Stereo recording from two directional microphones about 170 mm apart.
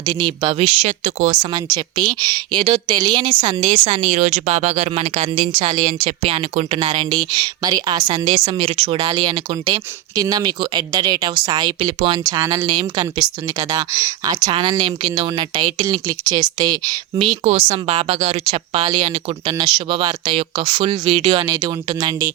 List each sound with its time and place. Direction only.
0.0 s speech: 25° right (ahead or behind); by 1.4 s 40° right (ahead or behind)
1.4 s a woman's voice: 25° right (ahead or behind)